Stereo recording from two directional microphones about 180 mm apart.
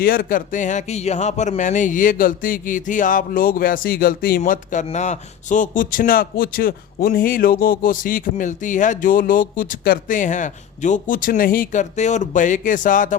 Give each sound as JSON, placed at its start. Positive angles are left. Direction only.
{"t": 0.0, "sound": "speech", "side_deg": 50}